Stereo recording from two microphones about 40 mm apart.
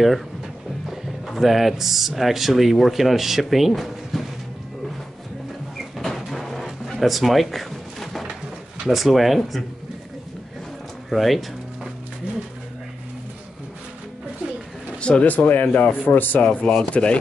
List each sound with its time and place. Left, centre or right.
0.8 s speech: centre
5.8 s a sound: centre
8.8 s speech: centre
11.1 s speech: centre
15.0 s a sound: left
15.2 s speech: left
16.4 s speech: left